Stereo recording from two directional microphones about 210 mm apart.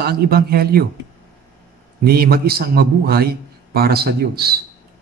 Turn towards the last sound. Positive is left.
turn(degrees=-50)  # may be behind; listen again after turning